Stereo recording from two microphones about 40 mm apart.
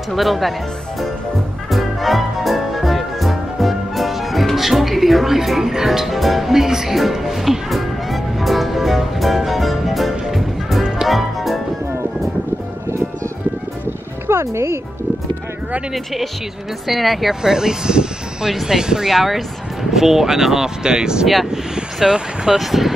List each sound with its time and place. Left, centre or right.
0.1 s speech: centre
1.7 s music: centre
14.3 s music: right
15.9 s speech: centre
17.4 s speech: centre
18.5 s speech: centre
18.8 s speech: centre
21.5 s vehicle: centre
22.6 s speech: centre